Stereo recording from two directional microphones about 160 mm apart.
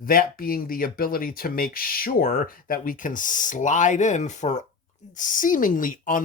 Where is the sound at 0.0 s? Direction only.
65° left (ahead or behind).